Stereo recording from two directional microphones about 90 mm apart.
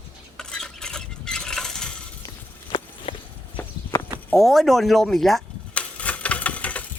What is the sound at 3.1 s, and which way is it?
Clip-clop, 75° left (ahead or behind).